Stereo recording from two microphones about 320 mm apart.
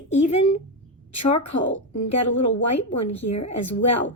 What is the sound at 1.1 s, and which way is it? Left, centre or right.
Speech, left.